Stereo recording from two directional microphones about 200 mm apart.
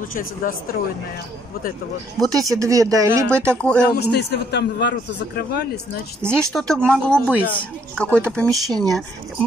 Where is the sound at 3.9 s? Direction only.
55° left (ahead or behind).